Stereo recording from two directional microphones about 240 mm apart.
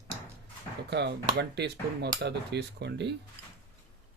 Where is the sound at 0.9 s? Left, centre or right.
Right.